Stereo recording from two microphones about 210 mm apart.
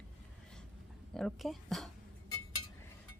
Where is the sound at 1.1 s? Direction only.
Centre (ahead or behind).